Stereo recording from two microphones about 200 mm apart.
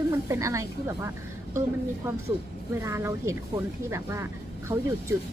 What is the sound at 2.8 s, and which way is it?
Speech, 15° right (ahead or behind).